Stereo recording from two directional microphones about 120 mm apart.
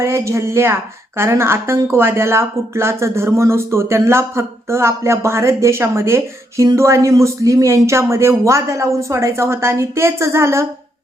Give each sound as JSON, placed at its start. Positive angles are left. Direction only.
{"t": 0.0, "sound": "a woman's voice", "side_deg": -25}